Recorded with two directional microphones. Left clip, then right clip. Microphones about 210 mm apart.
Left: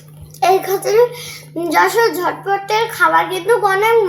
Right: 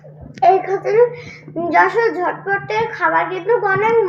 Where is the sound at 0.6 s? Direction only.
20° left (ahead or behind).